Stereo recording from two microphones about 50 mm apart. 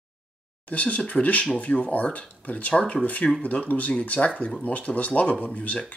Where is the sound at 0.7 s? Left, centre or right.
Left.